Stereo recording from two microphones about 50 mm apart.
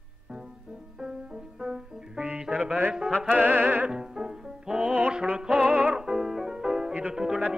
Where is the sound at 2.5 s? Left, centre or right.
Right.